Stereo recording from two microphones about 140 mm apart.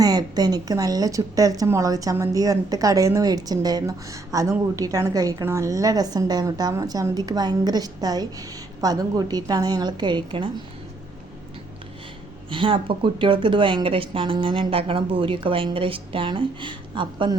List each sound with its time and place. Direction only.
0.0 s speech: 30° right (ahead or behind)
12.5 s speech: 35° right (ahead or behind)